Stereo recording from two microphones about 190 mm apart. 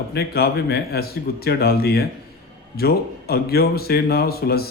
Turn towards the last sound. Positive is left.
turn(degrees=55)  # may be behind; listen again after turning